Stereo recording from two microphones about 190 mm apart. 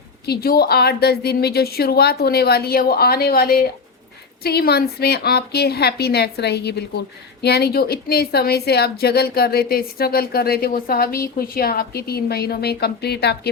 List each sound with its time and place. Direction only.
0.3 s a woman's voice: 55° left (ahead or behind)